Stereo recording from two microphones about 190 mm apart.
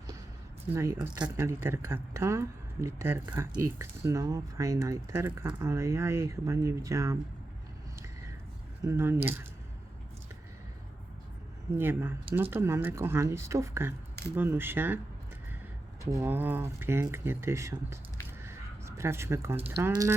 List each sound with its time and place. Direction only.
0.7 s speech: 15° right (ahead or behind)
8.8 s speech: 15° right (ahead or behind)
11.7 s speech: 10° right (ahead or behind)
16.0 s speech: 15° right (ahead or behind)
18.4 s a sound: 15° right (ahead or behind)
19.9 s speech: 20° right (ahead or behind)